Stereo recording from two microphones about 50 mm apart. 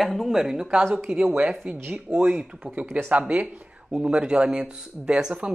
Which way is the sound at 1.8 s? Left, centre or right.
Right.